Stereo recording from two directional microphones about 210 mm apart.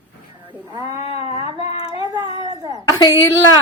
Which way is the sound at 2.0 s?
20° right (ahead or behind).